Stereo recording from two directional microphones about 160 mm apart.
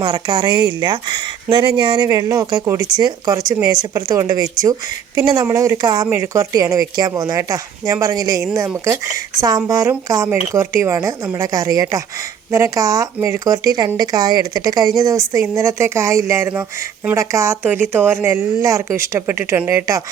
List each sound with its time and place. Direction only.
0.0 s speech: 30° right (ahead or behind)